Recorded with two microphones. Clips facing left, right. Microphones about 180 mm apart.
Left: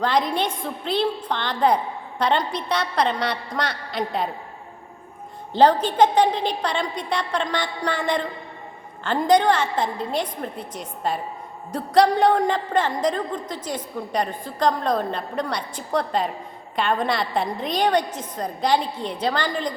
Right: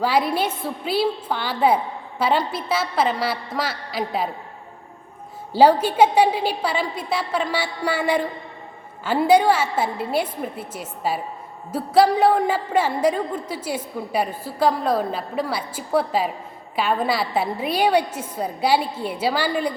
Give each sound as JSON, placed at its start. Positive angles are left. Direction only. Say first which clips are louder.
{"t": 0.0, "sound": "a woman's voice", "louder": "right 1 dB", "side_deg": -5}
{"t": 5.5, "sound": "a woman's voice", "louder": "right 1 dB", "side_deg": -10}